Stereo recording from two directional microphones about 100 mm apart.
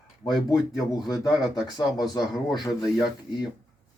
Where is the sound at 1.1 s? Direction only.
40° left (ahead or behind).